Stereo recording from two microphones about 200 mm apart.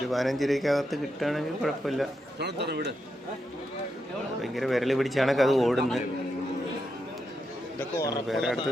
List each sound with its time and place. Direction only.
0.1 s speech: centre (ahead or behind)
2.4 s a man's voice: 55° right (ahead or behind)
4.4 s speech: centre (ahead or behind)
7.8 s a man's voice: 15° left (ahead or behind)
8.3 s speech: centre (ahead or behind)